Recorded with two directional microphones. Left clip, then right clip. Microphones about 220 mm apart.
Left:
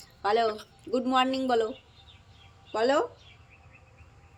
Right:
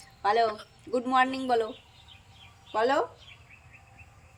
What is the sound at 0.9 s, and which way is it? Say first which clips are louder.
Speech: right 1 dB; 10° left (ahead or behind).